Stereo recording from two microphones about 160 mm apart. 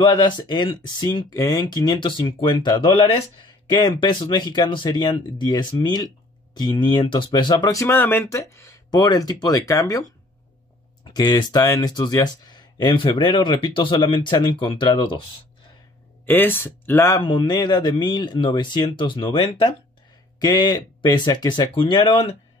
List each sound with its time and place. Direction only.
0.0 s speech: 30° left (ahead or behind)
11.1 s speech: 30° left (ahead or behind)
16.3 s speech: 10° left (ahead or behind); by 22.2 s 30° left (ahead or behind)